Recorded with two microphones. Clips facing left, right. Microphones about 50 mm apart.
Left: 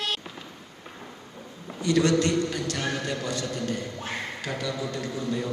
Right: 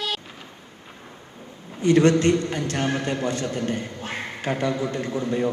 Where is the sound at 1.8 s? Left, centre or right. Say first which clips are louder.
Right 5 dB; right.